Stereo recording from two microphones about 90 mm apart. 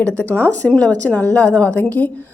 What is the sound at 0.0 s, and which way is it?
A woman's voice, 15° left (ahead or behind).